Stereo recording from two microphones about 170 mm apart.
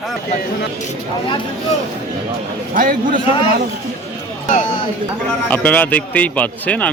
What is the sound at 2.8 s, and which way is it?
Speech, 55° right (ahead or behind).